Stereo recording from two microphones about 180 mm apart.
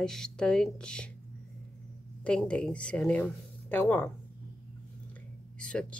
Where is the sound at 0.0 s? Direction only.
5° left (ahead or behind).